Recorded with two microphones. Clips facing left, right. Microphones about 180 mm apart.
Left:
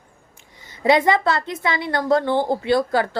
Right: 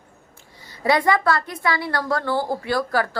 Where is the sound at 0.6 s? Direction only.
20° left (ahead or behind).